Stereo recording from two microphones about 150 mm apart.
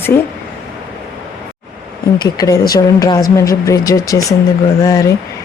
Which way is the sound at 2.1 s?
25° left (ahead or behind).